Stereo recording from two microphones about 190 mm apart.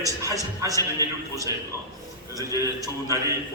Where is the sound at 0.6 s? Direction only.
20° right (ahead or behind).